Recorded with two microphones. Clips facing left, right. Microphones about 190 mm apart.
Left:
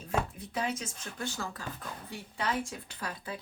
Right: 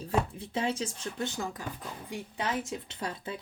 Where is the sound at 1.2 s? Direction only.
20° right (ahead or behind).